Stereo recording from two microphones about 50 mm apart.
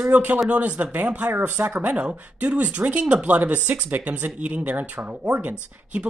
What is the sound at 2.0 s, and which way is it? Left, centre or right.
A woman's voice, right.